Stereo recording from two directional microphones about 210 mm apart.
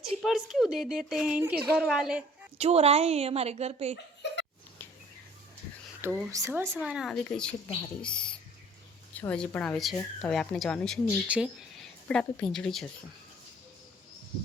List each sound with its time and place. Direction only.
0.2 s speech: centre (ahead or behind)
2.6 s a woman's voice: 30° right (ahead or behind)
4.2 s a sound: 55° left (ahead or behind)
6.0 s speech: 10° right (ahead or behind)